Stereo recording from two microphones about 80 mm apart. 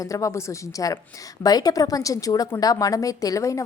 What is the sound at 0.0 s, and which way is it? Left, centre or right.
Speech, left.